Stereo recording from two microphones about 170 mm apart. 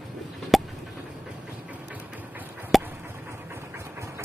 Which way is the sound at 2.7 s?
Centre (ahead or behind).